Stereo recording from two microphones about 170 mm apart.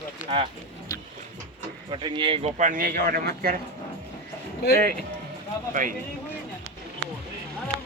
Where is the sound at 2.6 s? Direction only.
50° right (ahead or behind).